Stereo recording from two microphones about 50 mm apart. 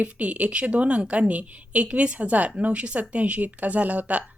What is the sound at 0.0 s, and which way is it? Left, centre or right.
Speech, right.